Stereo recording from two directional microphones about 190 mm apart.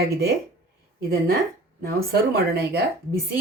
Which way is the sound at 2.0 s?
55° right (ahead or behind).